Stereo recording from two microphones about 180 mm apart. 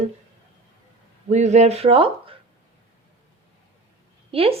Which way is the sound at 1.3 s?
40° right (ahead or behind).